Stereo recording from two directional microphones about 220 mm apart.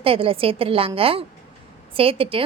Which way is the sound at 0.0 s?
25° right (ahead or behind).